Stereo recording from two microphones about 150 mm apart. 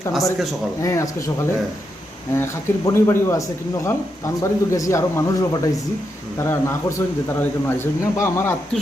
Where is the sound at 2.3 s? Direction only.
20° left (ahead or behind).